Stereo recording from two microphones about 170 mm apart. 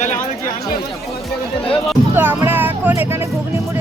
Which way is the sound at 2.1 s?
10° right (ahead or behind).